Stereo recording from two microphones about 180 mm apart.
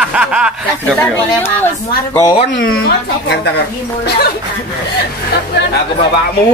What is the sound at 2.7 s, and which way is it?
A woman's voice, 60° left (ahead or behind).